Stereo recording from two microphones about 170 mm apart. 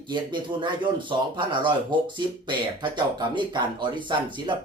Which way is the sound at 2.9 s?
25° right (ahead or behind).